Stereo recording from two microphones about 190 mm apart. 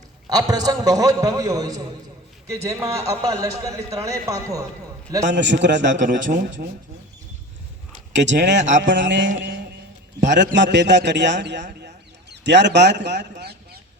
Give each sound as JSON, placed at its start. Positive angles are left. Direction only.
{"t": 0.3, "sound": "a man's voice", "side_deg": -20}
{"t": 5.3, "sound": "a man's voice", "side_deg": -70}
{"t": 6.0, "sound": "a man's voice", "side_deg": -40}
{"t": 8.1, "sound": "a man's voice", "side_deg": -70}
{"t": 11.8, "sound": "a sound", "side_deg": -65}